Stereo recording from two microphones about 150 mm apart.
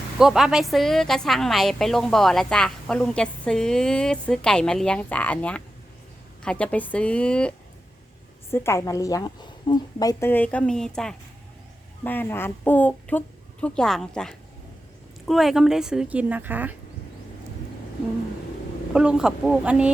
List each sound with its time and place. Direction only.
0.2 s a woman's voice: 5° right (ahead or behind); by 10.2 s 25° left (ahead or behind)
10.2 s a woman's voice: 10° left (ahead or behind); by 16.7 s 10° right (ahead or behind)
18.9 s a woman's voice: 5° right (ahead or behind)